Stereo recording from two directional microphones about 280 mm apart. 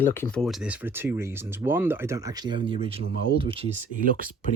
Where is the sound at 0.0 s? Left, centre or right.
Centre; by 4.1 s right.